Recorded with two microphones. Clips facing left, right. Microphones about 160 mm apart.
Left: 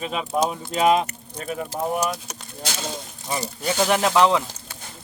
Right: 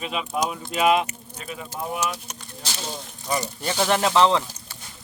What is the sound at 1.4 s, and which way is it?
Speech, 50° left (ahead or behind).